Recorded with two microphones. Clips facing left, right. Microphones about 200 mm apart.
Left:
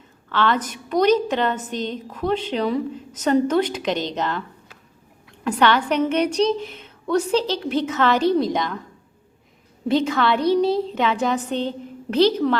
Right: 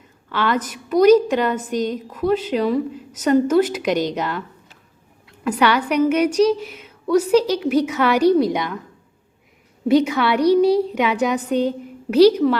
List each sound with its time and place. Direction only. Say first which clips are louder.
0.3 s a woman's voice: even; 10° right (ahead or behind)
5.5 s a woman's voice: right 1 dB; 10° right (ahead or behind)
9.9 s a woman's voice: right 3 dB; 10° right (ahead or behind)
10.4 s a child's voice: right 6 dB; 25° left (ahead or behind)
10.9 s a woman's voice: right 2 dB; 10° right (ahead or behind)